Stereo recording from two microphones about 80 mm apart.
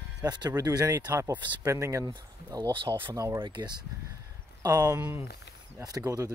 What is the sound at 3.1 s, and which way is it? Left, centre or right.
Speech, right.